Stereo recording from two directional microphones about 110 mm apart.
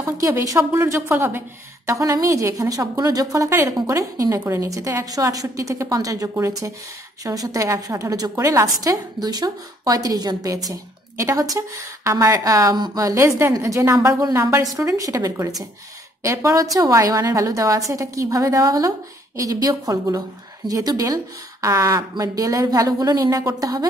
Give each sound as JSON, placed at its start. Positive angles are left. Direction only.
{"t": 0.0, "sound": "a woman's voice", "side_deg": -30}